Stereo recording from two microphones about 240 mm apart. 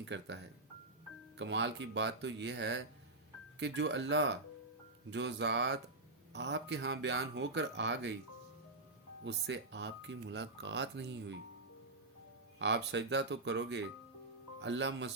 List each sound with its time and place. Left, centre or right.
0.0 s speech: right
9.2 s speech: right
12.5 s speech: right